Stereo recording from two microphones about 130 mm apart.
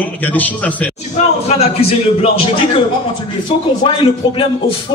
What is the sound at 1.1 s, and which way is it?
Speech, 50° left (ahead or behind).